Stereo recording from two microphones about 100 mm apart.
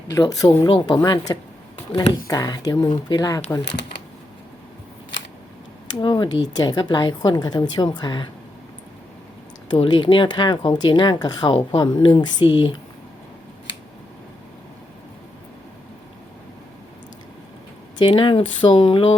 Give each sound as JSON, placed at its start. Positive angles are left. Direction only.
{"t": 0.1, "sound": "speech", "side_deg": 35}
{"t": 0.7, "sound": "speech", "side_deg": 45}
{"t": 6.0, "sound": "speech", "side_deg": 50}
{"t": 9.9, "sound": "speech", "side_deg": 55}
{"t": 17.9, "sound": "speech", "side_deg": 50}